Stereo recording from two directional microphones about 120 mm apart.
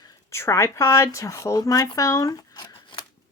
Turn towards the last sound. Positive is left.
turn(degrees=40)  # may be behind; listen again after turning